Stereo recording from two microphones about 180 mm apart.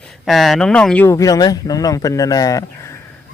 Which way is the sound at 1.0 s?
20° left (ahead or behind).